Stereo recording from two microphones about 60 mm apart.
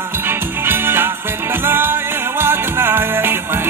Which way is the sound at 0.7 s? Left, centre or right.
Right.